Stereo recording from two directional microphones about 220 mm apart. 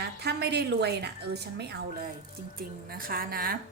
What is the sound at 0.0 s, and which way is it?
A woman's voice, 50° right (ahead or behind).